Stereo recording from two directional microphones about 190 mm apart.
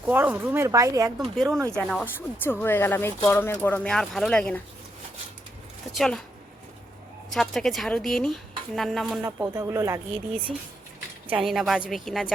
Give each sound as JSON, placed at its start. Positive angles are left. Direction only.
{"t": 0.0, "sound": "speech", "side_deg": -10}
{"t": 1.2, "sound": "speech", "side_deg": 0}
{"t": 1.5, "sound": "speech", "side_deg": -15}
{"t": 2.1, "sound": "speech", "side_deg": 10}
{"t": 5.9, "sound": "speech", "side_deg": 0}
{"t": 7.3, "sound": "speech", "side_deg": 0}
{"t": 9.6, "sound": "speech", "side_deg": -15}
{"t": 11.3, "sound": "speech", "side_deg": -5}